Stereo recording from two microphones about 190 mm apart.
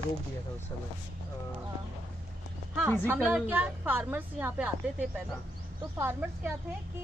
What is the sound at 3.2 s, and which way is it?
A woman's voice, 5° right (ahead or behind).